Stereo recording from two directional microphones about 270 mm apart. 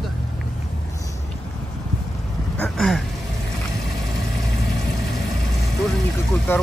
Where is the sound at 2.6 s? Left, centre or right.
Centre.